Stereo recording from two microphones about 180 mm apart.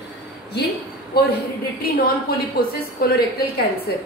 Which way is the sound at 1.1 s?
60° left (ahead or behind).